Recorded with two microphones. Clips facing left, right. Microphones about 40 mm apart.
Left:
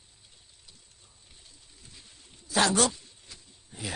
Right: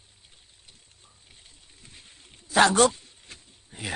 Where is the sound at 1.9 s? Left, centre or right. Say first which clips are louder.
Right 2 dB; right.